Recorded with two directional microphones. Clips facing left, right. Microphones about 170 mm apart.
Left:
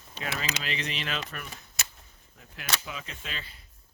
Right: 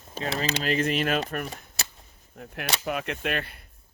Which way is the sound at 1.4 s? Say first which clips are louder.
Right 6 dB; 35° right (ahead or behind).